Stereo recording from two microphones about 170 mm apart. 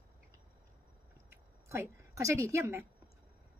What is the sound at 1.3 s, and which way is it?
A woman's voice, 15° right (ahead or behind).